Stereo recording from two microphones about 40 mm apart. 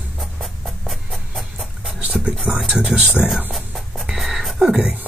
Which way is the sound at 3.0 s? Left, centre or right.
Right.